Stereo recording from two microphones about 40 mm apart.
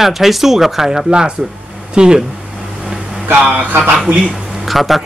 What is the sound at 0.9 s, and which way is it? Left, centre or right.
Speech, centre.